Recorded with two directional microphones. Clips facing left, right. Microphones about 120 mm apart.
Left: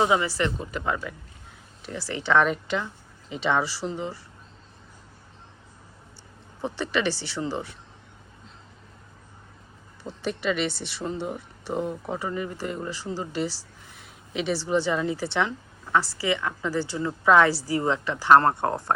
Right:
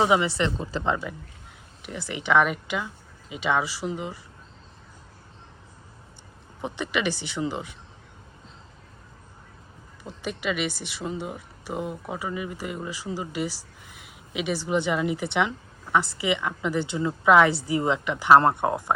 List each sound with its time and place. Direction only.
0.0 s a woman's voice: 20° right (ahead or behind)
6.6 s a woman's voice: 15° right (ahead or behind)
10.0 s a woman's voice: 10° right (ahead or behind)